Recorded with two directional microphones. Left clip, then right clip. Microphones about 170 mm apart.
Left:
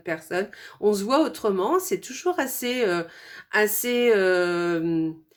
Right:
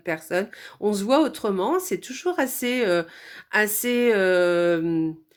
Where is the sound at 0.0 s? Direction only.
30° right (ahead or behind).